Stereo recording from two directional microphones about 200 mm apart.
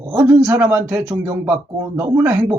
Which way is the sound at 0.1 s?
10° right (ahead or behind).